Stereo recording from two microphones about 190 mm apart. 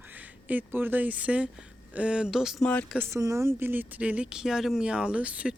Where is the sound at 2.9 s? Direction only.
15° right (ahead or behind).